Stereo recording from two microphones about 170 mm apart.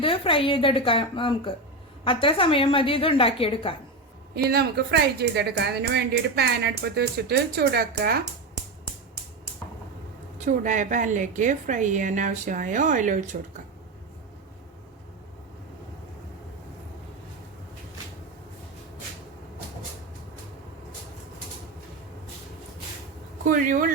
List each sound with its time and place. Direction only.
0.0 s a woman's voice: 30° left (ahead or behind)
4.4 s speech: 70° right (ahead or behind)
10.4 s a woman's voice: 45° right (ahead or behind)
23.5 s speech: 50° right (ahead or behind)